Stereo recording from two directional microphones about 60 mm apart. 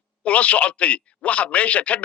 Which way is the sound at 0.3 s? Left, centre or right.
Left.